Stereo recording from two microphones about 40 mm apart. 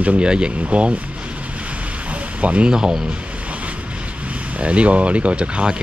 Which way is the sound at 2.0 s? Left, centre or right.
Right.